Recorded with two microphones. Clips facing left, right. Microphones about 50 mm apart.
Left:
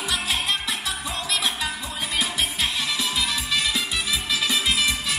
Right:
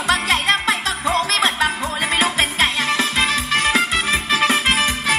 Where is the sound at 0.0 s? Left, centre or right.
Right.